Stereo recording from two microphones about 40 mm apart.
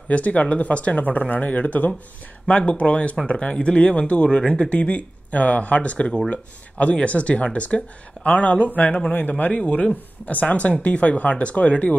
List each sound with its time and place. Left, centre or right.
0.1 s speech: left
9.5 s speech: left